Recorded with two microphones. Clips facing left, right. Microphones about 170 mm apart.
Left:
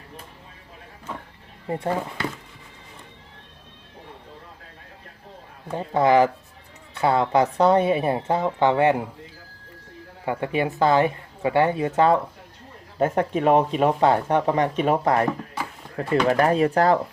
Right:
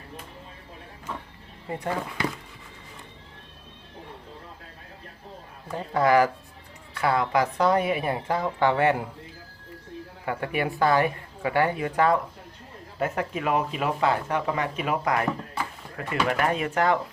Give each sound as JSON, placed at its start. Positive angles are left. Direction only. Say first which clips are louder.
{"t": 1.6, "sound": "speech", "louder": "left 5 dB", "side_deg": 35}
{"t": 5.7, "sound": "a woman's voice", "louder": "left 3 dB", "side_deg": 25}
{"t": 10.2, "sound": "a woman's voice", "louder": "left 4 dB", "side_deg": 20}